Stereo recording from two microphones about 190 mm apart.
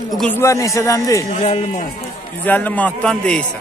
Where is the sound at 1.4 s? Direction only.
30° left (ahead or behind).